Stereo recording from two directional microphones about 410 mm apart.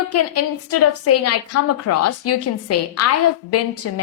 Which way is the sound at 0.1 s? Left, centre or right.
Left.